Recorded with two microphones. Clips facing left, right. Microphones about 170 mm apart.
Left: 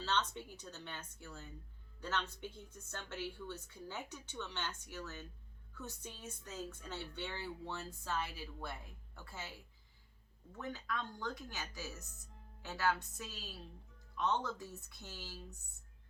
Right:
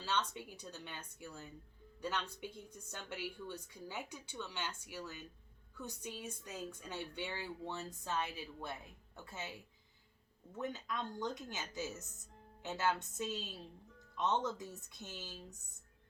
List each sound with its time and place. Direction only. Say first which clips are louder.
0.0 s a woman's voice: left 1 dB; 10° right (ahead or behind)